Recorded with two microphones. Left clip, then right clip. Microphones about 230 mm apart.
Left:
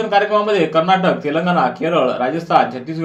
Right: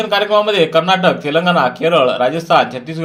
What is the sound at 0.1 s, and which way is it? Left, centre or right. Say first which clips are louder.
Speech: right 1 dB; right.